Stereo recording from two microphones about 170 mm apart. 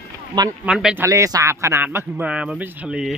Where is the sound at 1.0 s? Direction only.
20° right (ahead or behind).